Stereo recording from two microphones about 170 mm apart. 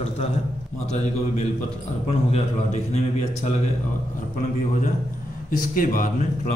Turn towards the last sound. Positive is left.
turn(degrees=55)  # may be behind; listen again after turning